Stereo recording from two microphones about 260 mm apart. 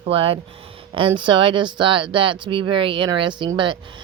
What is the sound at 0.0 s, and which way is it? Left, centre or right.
A woman's voice, right.